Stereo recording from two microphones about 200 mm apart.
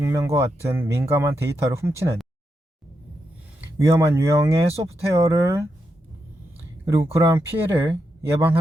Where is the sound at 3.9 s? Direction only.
15° right (ahead or behind).